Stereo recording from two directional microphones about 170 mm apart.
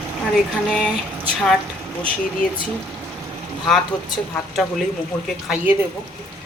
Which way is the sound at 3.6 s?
Centre (ahead or behind).